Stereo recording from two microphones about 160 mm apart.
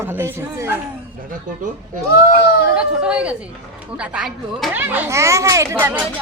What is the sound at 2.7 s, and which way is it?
A woman's voice, 5° right (ahead or behind).